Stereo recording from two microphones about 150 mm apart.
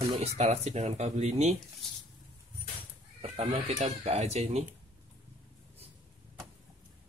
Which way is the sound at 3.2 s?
40° right (ahead or behind).